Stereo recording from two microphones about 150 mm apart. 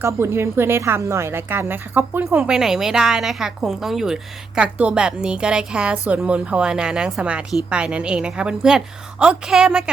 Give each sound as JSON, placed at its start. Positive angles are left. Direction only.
{"t": 0.0, "sound": "a woman's voice", "side_deg": -15}